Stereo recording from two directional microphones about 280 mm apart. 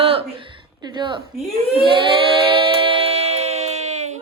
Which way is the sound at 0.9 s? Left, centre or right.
Centre.